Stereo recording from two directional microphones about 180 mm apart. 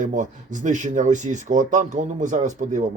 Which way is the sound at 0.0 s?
45° right (ahead or behind).